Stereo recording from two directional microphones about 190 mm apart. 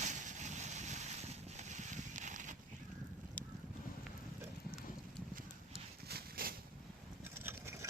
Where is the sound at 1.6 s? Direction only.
40° right (ahead or behind).